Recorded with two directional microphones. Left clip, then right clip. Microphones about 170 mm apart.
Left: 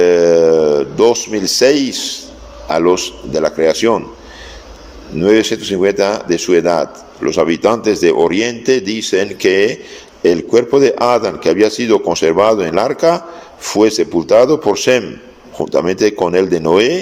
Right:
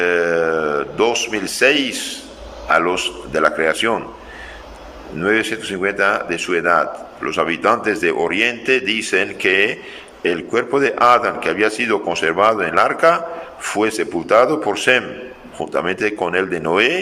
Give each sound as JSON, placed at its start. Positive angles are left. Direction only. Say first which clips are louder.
{"t": 0.0, "sound": "a sound", "louder": "left 7 dB", "side_deg": 25}
{"t": 2.6, "sound": "speech", "louder": "left 3 dB", "side_deg": 30}
{"t": 5.1, "sound": "speech", "louder": "left 6 dB", "side_deg": 25}